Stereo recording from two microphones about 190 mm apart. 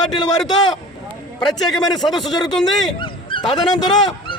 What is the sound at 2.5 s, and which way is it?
Speech, centre (ahead or behind).